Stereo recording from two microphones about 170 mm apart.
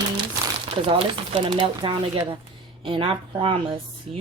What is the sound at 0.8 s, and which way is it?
A woman's voice, 30° right (ahead or behind).